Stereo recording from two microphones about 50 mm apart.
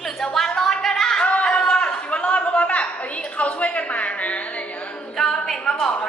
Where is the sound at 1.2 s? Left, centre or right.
Left.